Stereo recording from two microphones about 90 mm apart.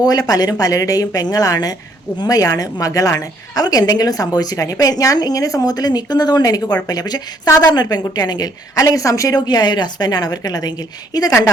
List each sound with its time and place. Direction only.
0.0 s a woman's voice: 45° left (ahead or behind)